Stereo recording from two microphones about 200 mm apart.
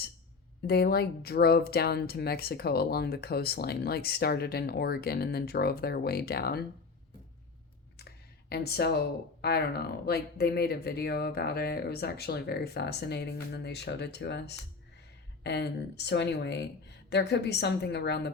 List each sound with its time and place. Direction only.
0.7 s speech: 50° left (ahead or behind)
8.4 s speech: 55° left (ahead or behind)